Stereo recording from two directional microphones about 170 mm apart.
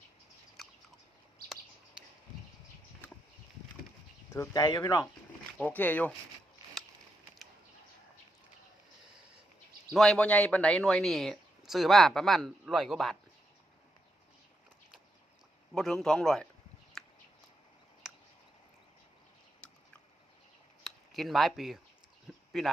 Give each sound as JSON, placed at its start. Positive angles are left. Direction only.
{"t": 0.6, "sound": "bird", "side_deg": 0}
{"t": 4.3, "sound": "speech", "side_deg": 20}
{"t": 5.5, "sound": "speech", "side_deg": 10}
{"t": 9.9, "sound": "speech", "side_deg": 5}
{"t": 15.7, "sound": "speech", "side_deg": 0}
{"t": 17.0, "sound": "a sound", "side_deg": 5}
{"t": 20.8, "sound": "a sound", "side_deg": 0}
{"t": 22.5, "sound": "speech", "side_deg": 0}